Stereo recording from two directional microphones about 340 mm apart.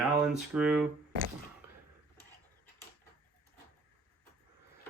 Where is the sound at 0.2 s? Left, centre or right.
Centre.